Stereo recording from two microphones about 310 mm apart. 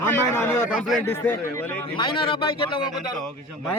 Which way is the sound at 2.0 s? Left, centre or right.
Centre.